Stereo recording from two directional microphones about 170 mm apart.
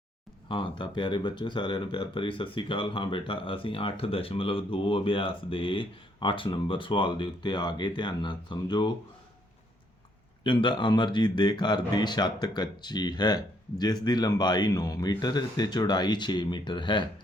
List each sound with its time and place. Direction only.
0.4 s speech: 30° left (ahead or behind)
10.4 s speech: 30° left (ahead or behind)